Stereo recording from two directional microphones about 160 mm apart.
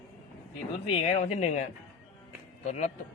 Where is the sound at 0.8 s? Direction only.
40° left (ahead or behind).